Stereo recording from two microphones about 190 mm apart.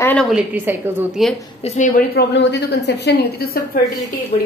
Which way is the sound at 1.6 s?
40° left (ahead or behind).